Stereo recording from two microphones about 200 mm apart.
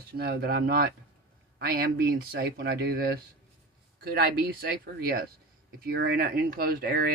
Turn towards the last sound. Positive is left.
turn(degrees=-50)  # may be behind; listen again after turning